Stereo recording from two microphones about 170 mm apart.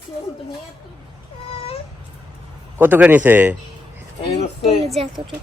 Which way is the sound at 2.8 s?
10° right (ahead or behind).